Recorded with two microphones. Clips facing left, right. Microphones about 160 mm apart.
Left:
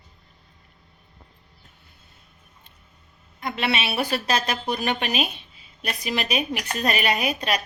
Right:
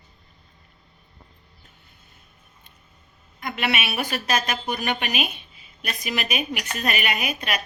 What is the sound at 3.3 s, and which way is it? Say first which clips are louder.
A woman's voice: left 1 dB; 30° left (ahead or behind).